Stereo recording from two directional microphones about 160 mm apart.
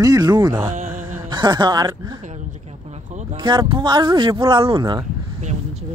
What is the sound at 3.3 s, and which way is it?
Speech, 30° right (ahead or behind).